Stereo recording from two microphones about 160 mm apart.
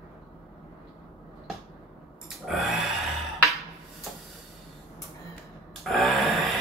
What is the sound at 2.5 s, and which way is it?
Grunt, centre (ahead or behind).